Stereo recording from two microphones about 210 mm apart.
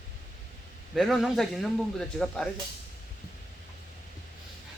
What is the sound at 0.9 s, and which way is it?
A man's voice, centre (ahead or behind).